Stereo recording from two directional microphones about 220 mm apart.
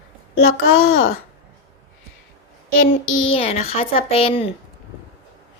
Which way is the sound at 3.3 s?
25° left (ahead or behind).